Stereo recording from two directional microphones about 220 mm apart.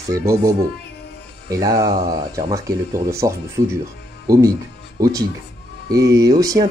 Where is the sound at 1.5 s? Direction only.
15° right (ahead or behind).